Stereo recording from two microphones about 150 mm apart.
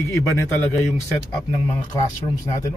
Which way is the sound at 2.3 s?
25° left (ahead or behind).